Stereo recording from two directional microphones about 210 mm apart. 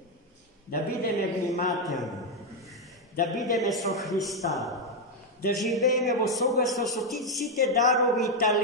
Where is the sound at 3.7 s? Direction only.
Centre (ahead or behind).